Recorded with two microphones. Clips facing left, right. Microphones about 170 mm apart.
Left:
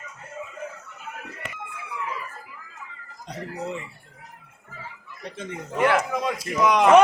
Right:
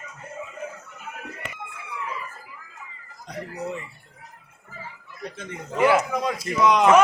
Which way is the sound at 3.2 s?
20° left (ahead or behind).